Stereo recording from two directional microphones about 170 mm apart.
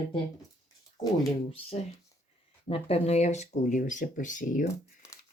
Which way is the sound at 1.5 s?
35° left (ahead or behind).